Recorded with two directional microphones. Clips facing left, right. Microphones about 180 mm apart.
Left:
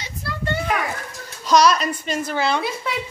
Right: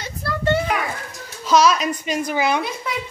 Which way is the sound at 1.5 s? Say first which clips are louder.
Even; 5° right (ahead or behind).